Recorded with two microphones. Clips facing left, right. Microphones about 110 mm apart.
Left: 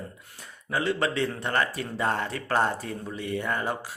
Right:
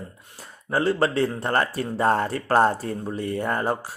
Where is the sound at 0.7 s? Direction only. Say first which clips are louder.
Right 5 dB; 40° right (ahead or behind).